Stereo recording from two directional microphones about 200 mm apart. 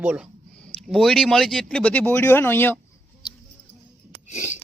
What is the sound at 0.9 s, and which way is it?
Speech, centre (ahead or behind).